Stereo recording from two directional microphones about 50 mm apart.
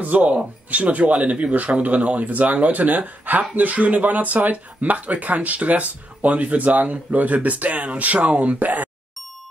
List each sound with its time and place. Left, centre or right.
0.0 s speech: right